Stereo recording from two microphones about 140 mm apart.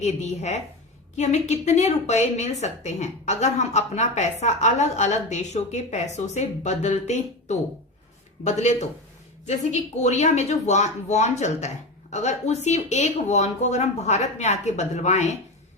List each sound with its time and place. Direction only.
0.0 s a woman's voice: 55° left (ahead or behind)